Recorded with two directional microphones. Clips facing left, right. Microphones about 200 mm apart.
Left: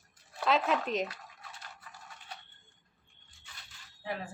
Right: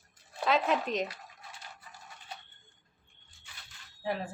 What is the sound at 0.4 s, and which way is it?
Speech, centre (ahead or behind).